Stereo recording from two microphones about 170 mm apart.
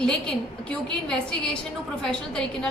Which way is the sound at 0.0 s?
5° left (ahead or behind).